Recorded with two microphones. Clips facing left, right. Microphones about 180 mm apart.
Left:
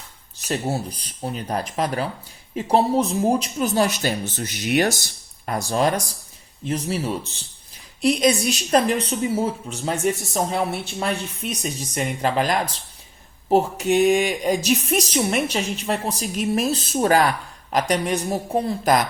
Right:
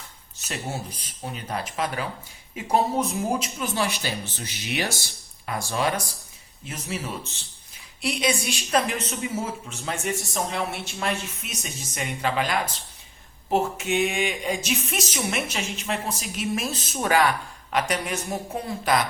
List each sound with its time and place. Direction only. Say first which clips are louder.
0.4 s a woman's voice: left 7 dB; 35° left (ahead or behind)